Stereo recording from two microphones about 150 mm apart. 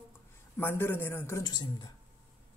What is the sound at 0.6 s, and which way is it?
A man's voice, 15° left (ahead or behind).